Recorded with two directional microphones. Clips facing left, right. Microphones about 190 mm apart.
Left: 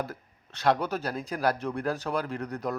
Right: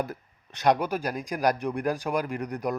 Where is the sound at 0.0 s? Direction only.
15° right (ahead or behind).